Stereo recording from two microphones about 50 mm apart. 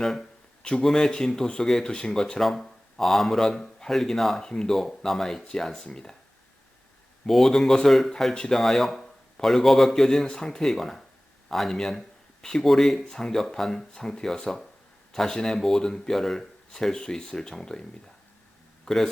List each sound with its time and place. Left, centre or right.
0.0 s speech: centre
0.6 s speech: centre
7.3 s speech: centre
18.9 s speech: centre